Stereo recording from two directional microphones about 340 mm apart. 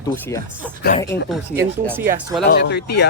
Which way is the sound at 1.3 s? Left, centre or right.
Centre.